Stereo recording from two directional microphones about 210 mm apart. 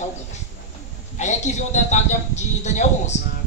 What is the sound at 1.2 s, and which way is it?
A man's voice, 35° left (ahead or behind).